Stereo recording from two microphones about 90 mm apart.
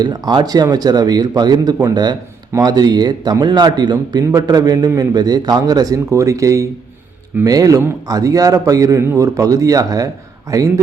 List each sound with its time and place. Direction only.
0.0 s a man's voice: 50° right (ahead or behind)